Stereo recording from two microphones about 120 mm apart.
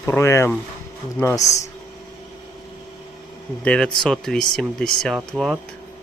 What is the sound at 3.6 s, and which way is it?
Speech, 5° left (ahead or behind).